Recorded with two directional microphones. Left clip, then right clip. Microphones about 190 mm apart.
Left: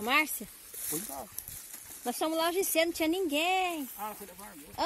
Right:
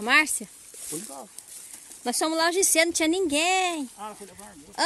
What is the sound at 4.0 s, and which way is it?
Speech, 30° right (ahead or behind).